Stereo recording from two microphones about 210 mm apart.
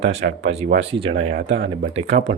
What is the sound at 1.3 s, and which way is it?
Speech, 50° right (ahead or behind).